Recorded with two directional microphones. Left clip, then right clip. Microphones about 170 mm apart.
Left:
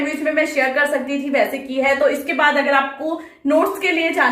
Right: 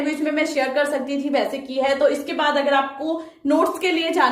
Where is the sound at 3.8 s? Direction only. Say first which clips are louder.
Left 3 dB; 50° right (ahead or behind).